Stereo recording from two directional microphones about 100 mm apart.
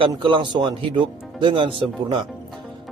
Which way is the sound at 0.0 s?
55° right (ahead or behind).